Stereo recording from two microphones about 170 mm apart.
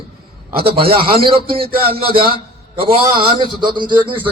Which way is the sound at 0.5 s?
65° right (ahead or behind).